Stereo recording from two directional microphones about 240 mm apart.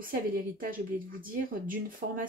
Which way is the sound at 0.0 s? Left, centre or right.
Right.